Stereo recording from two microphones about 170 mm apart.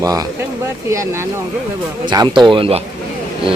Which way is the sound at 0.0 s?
20° right (ahead or behind).